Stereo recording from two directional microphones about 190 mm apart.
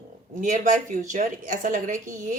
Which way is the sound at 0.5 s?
40° right (ahead or behind).